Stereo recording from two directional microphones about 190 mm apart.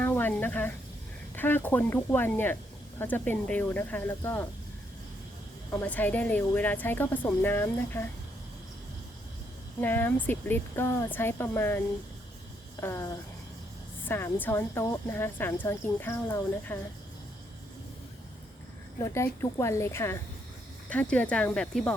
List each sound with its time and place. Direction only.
0.0 s a sound: 10° left (ahead or behind)
1.4 s speech: 10° left (ahead or behind)
5.7 s speech: 10° left (ahead or behind)
9.8 s speech: 10° left (ahead or behind)
12.8 s speech: 15° left (ahead or behind)
19.1 s speech: 15° left (ahead or behind)